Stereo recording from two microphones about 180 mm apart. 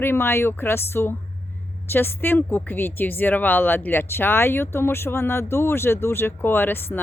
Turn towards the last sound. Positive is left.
turn(degrees=10)  # may be behind; listen again after turning